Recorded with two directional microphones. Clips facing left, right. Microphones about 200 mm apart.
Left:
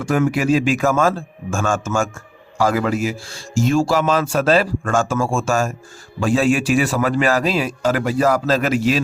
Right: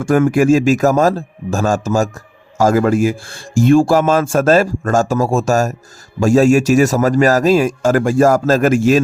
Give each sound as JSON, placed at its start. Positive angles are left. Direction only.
{"t": 0.0, "sound": "a man's voice", "side_deg": -50}